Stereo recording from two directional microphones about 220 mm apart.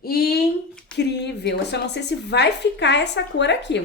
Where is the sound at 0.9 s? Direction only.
50° left (ahead or behind).